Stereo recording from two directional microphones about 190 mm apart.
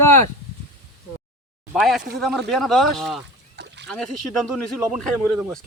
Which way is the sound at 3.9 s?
Centre (ahead or behind).